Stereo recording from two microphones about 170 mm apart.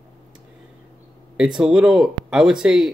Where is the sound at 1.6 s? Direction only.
5° right (ahead or behind).